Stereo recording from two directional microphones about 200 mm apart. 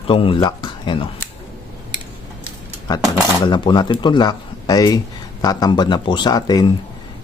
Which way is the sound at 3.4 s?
20° left (ahead or behind).